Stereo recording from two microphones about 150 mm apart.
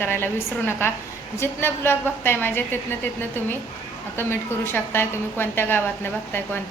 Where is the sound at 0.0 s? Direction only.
15° left (ahead or behind).